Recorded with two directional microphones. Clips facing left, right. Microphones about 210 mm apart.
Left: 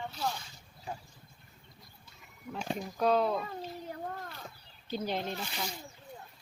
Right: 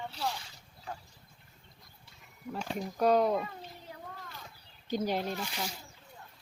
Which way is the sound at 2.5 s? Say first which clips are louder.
Left 1 dB; 15° left (ahead or behind).